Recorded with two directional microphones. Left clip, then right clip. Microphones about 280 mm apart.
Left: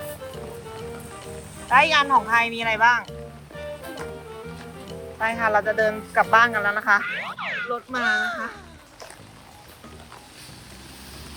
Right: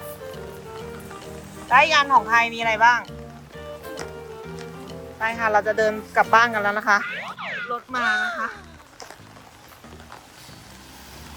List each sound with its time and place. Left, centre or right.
1.6 s speech: centre
4.9 s music: centre
5.8 s speech: centre
7.0 s speech: centre